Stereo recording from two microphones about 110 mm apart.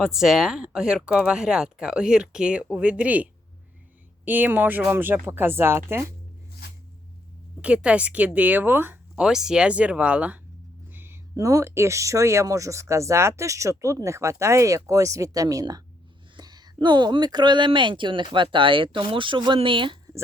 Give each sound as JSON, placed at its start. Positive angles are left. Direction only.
{"t": 0.0, "sound": "speech", "side_deg": -5}
{"t": 4.3, "sound": "speech", "side_deg": -15}
{"t": 7.6, "sound": "speech", "side_deg": -10}
{"t": 9.1, "sound": "speech", "side_deg": -5}
{"t": 10.9, "sound": "a sound", "side_deg": -20}
{"t": 11.3, "sound": "speech", "side_deg": -30}